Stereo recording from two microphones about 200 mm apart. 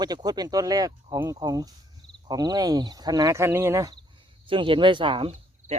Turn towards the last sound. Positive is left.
turn(degrees=-30)  # may be behind; listen again after turning